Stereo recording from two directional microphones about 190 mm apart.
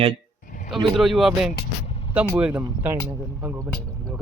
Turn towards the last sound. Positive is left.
turn(degrees=-10)  # may be behind; listen again after turning